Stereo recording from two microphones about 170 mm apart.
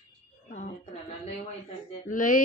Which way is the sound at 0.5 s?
45° left (ahead or behind).